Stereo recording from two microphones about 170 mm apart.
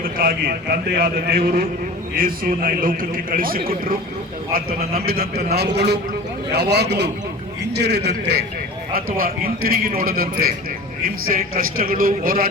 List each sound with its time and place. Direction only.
0.0 s a man's voice: 60° right (ahead or behind)
4.9 s a man's voice: 60° right (ahead or behind)
5.5 s a man's voice: 75° right (ahead or behind)
8.9 s a man's voice: 60° right (ahead or behind)